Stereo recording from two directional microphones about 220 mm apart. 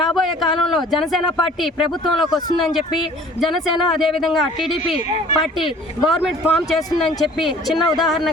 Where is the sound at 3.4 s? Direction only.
Centre (ahead or behind).